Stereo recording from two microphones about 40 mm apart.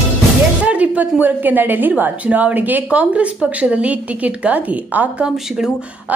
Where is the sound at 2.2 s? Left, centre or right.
Right.